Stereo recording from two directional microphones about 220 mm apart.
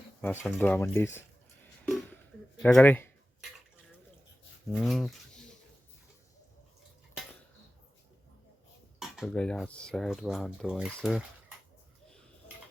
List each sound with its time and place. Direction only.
0.2 s speech: 10° left (ahead or behind)
1.8 s a sound: 5° left (ahead or behind)
2.6 s speech: 5° left (ahead or behind)
4.7 s speech: centre (ahead or behind)
9.0 s speech: centre (ahead or behind)